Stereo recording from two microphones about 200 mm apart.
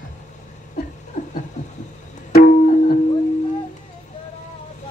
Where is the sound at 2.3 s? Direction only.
45° left (ahead or behind).